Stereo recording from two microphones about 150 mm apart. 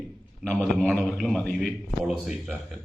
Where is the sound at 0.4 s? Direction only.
5° left (ahead or behind).